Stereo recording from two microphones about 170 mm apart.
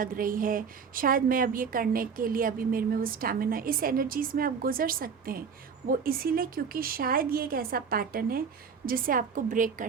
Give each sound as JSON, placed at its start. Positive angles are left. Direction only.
{"t": 0.0, "sound": "a woman's voice", "side_deg": -55}